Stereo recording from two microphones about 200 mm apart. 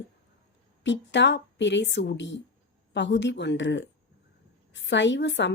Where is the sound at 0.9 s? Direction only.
65° left (ahead or behind).